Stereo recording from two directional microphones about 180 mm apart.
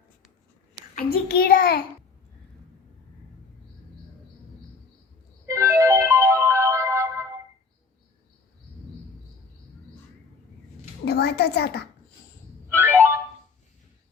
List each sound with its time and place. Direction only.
0.9 s a child's voice: 60° left (ahead or behind)
5.5 s music: 15° right (ahead or behind)
11.0 s a sound: 65° left (ahead or behind)
12.6 s music: 15° right (ahead or behind)